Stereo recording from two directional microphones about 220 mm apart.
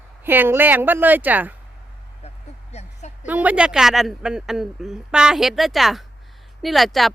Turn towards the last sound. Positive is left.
turn(degrees=0)  # may be behind; listen again after turning